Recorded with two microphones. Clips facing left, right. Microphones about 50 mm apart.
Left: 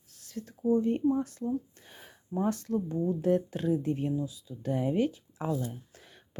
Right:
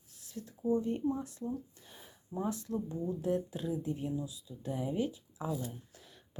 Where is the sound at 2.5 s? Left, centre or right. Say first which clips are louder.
Left 6 dB; left.